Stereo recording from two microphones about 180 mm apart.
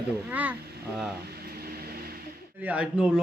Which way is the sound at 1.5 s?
60° right (ahead or behind).